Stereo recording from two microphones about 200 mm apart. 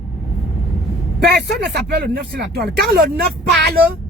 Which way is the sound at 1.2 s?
55° right (ahead or behind).